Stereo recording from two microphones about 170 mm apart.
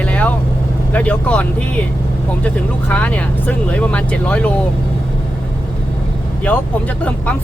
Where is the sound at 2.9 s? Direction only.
10° left (ahead or behind).